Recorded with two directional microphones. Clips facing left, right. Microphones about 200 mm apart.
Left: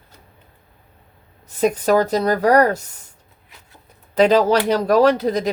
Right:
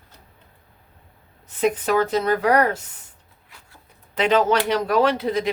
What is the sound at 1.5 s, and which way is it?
Speech, 40° left (ahead or behind).